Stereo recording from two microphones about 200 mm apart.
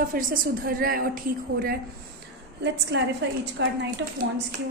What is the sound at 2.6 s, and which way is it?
A woman's voice, 60° right (ahead or behind).